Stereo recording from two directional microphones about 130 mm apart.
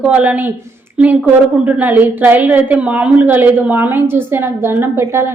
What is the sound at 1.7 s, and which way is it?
A woman's voice, 10° right (ahead or behind).